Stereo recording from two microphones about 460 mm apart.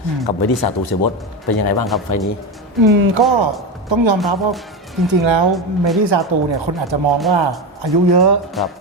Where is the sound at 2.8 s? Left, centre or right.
Right.